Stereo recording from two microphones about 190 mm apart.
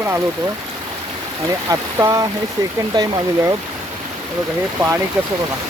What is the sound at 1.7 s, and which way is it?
Speech, 15° right (ahead or behind).